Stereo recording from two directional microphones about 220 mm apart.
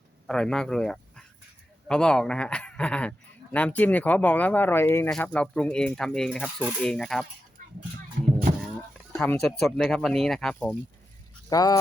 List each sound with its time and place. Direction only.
0.3 s speech: 5° left (ahead or behind)
8.2 s music: 35° right (ahead or behind)
9.1 s speech: 5° left (ahead or behind)
11.4 s speech: 15° left (ahead or behind)